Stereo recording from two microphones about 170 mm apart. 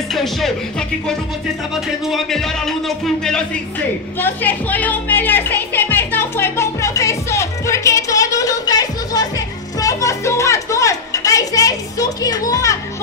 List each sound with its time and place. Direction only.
0.1 s speech: centre (ahead or behind)
4.2 s music: 10° left (ahead or behind)